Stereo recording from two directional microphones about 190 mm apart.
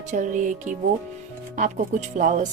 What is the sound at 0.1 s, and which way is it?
Music, 40° right (ahead or behind).